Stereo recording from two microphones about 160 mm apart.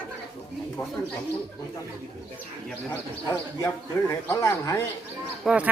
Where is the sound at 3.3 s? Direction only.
20° left (ahead or behind).